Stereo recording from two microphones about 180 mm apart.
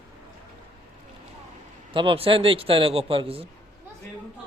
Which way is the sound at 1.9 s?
30° right (ahead or behind).